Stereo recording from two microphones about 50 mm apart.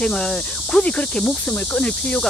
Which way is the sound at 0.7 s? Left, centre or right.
Left.